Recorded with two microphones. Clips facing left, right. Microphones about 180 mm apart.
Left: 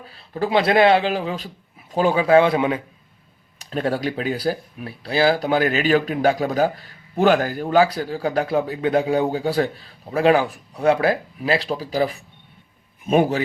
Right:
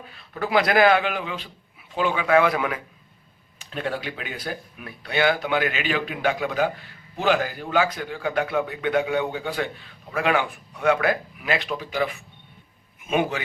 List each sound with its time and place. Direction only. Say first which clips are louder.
0.0 s speech: left 5 dB; 35° left (ahead or behind)
3.6 s speech: left 6 dB; 40° left (ahead or behind)